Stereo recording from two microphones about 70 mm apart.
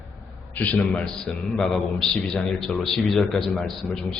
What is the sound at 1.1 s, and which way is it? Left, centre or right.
A man's voice, centre.